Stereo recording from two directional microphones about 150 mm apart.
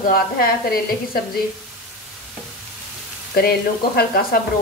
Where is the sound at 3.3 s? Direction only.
90° left.